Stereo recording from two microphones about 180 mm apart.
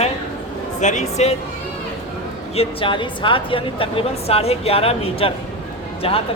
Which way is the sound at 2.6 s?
30° left (ahead or behind).